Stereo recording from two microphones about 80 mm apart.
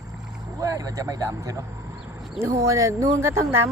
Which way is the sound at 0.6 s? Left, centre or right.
Right.